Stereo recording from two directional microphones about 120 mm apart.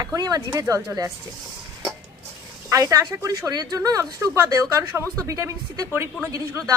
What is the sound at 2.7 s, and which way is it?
A woman's voice, 30° right (ahead or behind).